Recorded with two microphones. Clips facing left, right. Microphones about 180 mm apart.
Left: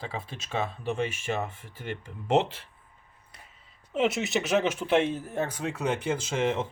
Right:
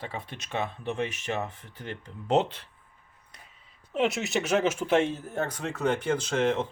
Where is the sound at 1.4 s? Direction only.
10° left (ahead or behind).